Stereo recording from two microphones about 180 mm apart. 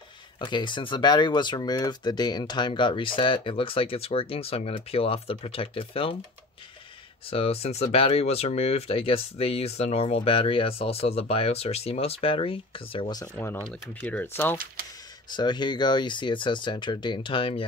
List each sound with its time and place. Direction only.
0.4 s speech: 25° left (ahead or behind)
7.2 s speech: 30° left (ahead or behind)
13.3 s speech: 10° left (ahead or behind)
15.3 s speech: 25° left (ahead or behind)